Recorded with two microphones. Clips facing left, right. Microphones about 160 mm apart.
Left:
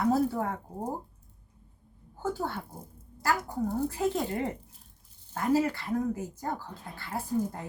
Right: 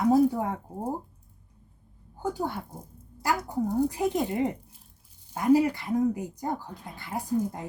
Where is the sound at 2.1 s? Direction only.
15° right (ahead or behind).